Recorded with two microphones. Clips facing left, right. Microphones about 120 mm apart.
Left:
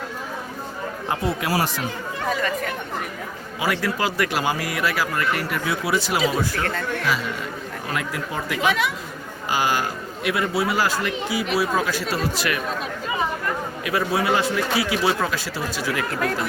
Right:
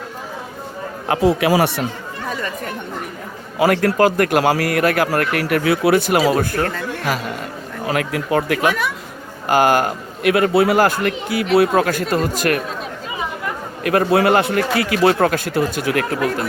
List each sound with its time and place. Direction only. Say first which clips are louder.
1.0 s speech: right 10 dB; 90° right; by 1.8 s 75° right (ahead or behind)
3.6 s speech: right 9 dB; 55° right (ahead or behind)
7.9 s speech: right 9 dB; 70° right (ahead or behind); by 12.6 s 50° right (ahead or behind)
13.8 s speech: right 8 dB; 55° right (ahead or behind)